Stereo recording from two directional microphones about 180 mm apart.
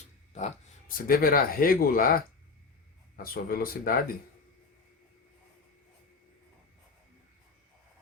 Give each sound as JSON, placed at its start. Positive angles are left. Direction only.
{"t": 0.3, "sound": "speech", "side_deg": 45}
{"t": 3.3, "sound": "speech", "side_deg": 55}